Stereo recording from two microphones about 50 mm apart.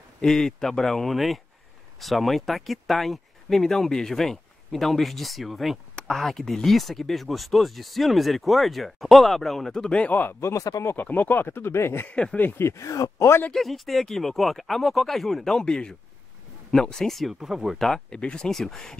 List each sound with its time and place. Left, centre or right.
0.2 s speech: centre
10.4 s speech: left
11.0 s speech: left
12.4 s speech: left
12.6 s speech: left
13.6 s speech: centre
17.7 s speech: centre